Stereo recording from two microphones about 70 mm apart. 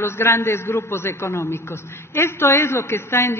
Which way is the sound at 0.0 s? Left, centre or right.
Left.